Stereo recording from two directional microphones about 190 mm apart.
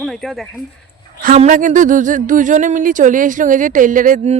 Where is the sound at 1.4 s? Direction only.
40° right (ahead or behind).